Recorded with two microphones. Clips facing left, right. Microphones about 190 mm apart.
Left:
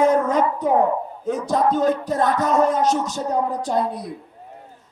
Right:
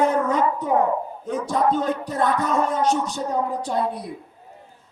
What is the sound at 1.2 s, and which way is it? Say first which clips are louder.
Music: left 2 dB; 40° left (ahead or behind).